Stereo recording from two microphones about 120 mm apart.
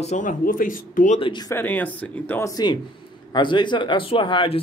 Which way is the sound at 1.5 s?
15° left (ahead or behind).